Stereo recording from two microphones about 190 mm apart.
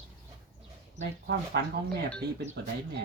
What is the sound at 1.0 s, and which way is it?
Speech, 65° right (ahead or behind).